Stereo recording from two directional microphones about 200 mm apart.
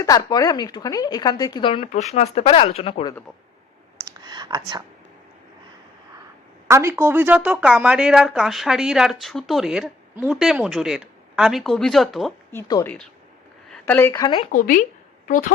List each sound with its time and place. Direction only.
0.0 s speech: 15° left (ahead or behind)
4.0 s whispering: 20° right (ahead or behind)
6.7 s speech: 15° right (ahead or behind)
12.5 s speech: 15° left (ahead or behind)
14.5 s speech: 40° left (ahead or behind)